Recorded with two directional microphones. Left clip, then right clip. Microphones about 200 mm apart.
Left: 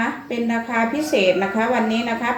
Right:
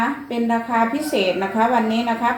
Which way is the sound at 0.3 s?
15° left (ahead or behind).